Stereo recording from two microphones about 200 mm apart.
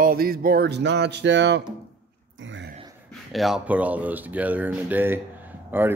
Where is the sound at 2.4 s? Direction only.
70° right (ahead or behind).